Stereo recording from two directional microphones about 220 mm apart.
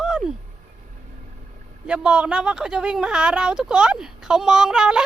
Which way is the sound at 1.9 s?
5° right (ahead or behind).